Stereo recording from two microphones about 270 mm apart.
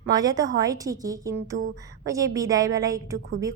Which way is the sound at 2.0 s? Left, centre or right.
Centre.